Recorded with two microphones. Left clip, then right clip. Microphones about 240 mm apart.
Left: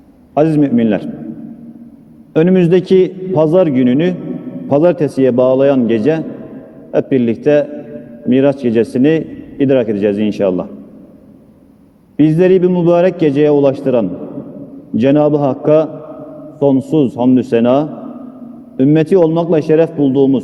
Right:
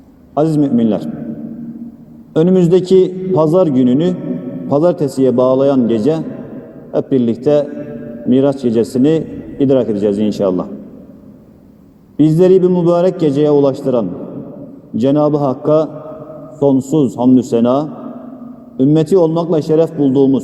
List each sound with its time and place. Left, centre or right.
0.3 s a man's voice: left
2.3 s a man's voice: left
12.1 s a man's voice: left